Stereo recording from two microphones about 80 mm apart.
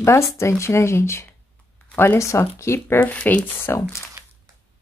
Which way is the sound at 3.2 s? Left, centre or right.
Centre.